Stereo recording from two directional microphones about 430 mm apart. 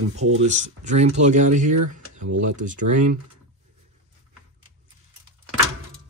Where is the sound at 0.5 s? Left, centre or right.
Centre.